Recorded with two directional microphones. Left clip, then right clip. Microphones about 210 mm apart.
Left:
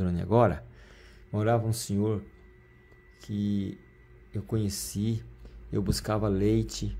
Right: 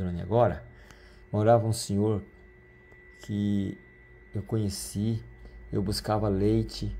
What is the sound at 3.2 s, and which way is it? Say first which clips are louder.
Speech: right 2 dB; 5° right (ahead or behind).